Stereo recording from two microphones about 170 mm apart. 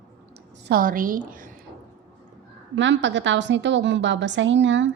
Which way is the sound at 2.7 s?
90° right.